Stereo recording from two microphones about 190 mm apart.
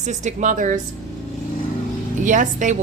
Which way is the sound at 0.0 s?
40° right (ahead or behind).